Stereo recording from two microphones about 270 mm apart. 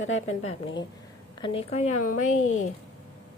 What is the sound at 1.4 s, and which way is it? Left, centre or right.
A woman's voice, centre.